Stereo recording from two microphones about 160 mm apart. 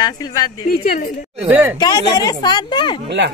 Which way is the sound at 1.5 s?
10° right (ahead or behind).